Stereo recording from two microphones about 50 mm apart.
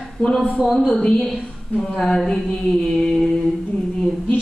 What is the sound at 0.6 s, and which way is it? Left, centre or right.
Speech, centre.